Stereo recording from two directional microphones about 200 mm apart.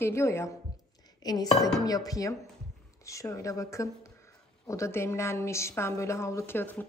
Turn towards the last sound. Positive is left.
turn(degrees=10)  # may be behind; listen again after turning